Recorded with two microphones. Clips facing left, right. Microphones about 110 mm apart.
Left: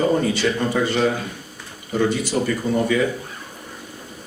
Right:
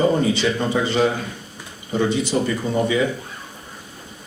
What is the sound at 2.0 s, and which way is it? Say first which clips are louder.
Speech: even; 50° left (ahead or behind).